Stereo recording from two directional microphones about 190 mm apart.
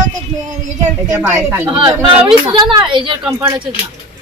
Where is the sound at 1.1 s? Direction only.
15° right (ahead or behind).